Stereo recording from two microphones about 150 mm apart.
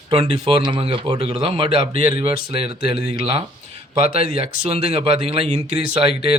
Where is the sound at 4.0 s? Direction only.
75° left (ahead or behind).